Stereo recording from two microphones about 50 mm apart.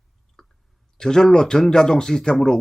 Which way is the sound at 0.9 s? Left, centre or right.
Centre.